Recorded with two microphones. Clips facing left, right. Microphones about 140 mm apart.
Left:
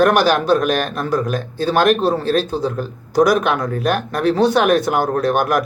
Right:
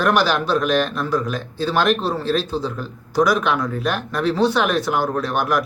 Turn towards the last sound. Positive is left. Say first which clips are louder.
# left 4 dB
turn(degrees=50)  # may be behind; listen again after turning